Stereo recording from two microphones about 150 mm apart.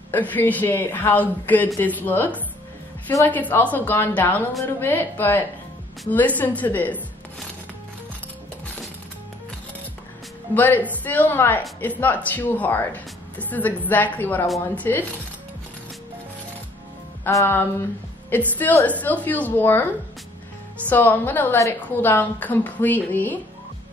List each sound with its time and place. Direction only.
0.1 s a woman's voice: 10° left (ahead or behind)
10.5 s a woman's voice: 10° left (ahead or behind)
17.2 s a woman's voice: 15° left (ahead or behind)
20.9 s a woman's voice: 10° left (ahead or behind)